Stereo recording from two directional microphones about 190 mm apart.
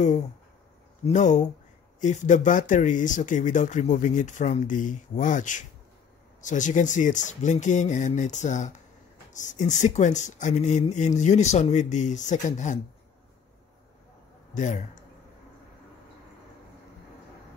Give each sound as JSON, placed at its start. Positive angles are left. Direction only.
{"t": 1.0, "sound": "speech", "side_deg": 40}
{"t": 14.5, "sound": "speech", "side_deg": 40}